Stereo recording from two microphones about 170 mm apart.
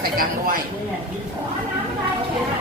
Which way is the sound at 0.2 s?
55° right (ahead or behind).